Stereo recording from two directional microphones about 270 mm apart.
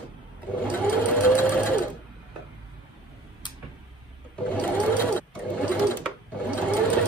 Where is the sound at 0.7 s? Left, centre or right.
Centre.